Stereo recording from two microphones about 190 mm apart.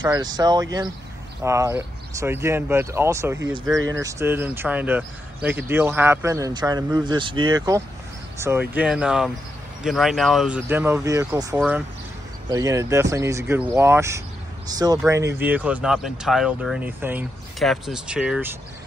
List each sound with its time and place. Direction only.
0.0 s speech: 20° right (ahead or behind)
12.4 s speech: 15° right (ahead or behind)